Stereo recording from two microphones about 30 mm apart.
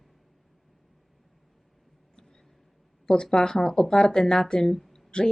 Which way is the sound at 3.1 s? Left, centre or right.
Centre.